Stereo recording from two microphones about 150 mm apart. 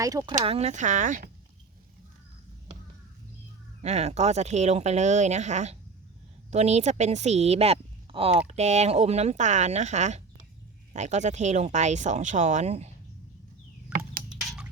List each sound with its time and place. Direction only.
0.0 s speech: 20° right (ahead or behind)
0.4 s speech: 45° right (ahead or behind); by 1.3 s 60° right (ahead or behind)
3.8 s a woman's voice: 45° right (ahead or behind)
13.9 s a sound: 75° right (ahead or behind)